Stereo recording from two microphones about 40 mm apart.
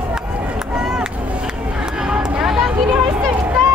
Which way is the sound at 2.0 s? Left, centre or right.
Centre.